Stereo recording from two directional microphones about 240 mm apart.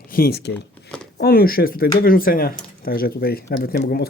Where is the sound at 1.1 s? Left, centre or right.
Left.